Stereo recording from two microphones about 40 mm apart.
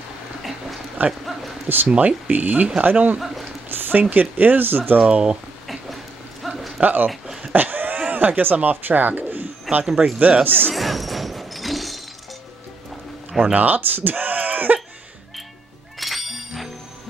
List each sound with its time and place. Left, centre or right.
1.0 s speech: right
1.9 s speech: right
3.6 s a sound: right
4.1 s speech: right
4.9 s speech: right
6.4 s a sound: centre
6.8 s speech: right
7.5 s a sound: right
8.6 s speech: right
9.8 s speech: centre
10.7 s a sound: centre
13.4 s speech: right
16.0 s music: centre